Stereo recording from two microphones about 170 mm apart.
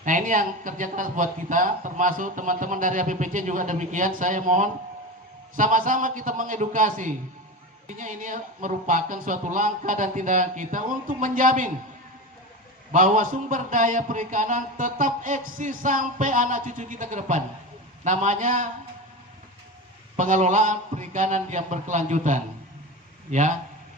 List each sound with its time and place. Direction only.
0.0 s a man's voice: 50° right (ahead or behind)
12.9 s a man's voice: 50° right (ahead or behind)
20.1 s a man's voice: 45° right (ahead or behind)